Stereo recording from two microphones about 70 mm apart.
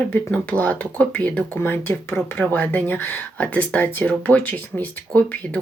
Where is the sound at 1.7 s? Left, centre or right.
Left.